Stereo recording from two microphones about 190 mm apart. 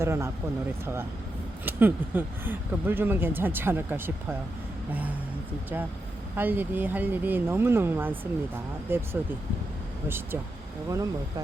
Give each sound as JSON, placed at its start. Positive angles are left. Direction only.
{"t": 0.0, "sound": "speech", "side_deg": -15}
{"t": 1.6, "sound": "speech", "side_deg": -10}
{"t": 6.3, "sound": "speech", "side_deg": -10}
{"t": 10.8, "sound": "speech", "side_deg": -20}